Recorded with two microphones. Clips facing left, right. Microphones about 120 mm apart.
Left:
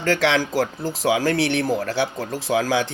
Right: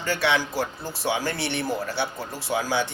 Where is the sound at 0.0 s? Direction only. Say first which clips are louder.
Left 4 dB; 90° left.